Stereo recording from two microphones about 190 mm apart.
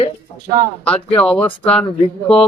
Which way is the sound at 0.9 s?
5° left (ahead or behind).